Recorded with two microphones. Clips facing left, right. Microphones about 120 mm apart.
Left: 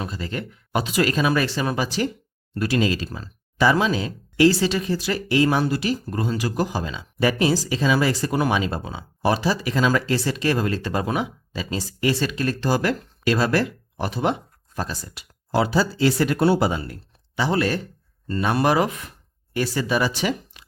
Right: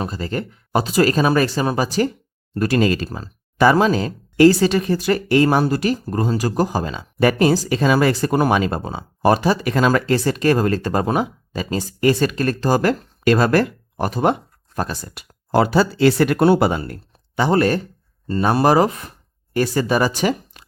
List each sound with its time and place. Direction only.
0.0 s speech: 40° right (ahead or behind)
18.3 s speech: 35° right (ahead or behind)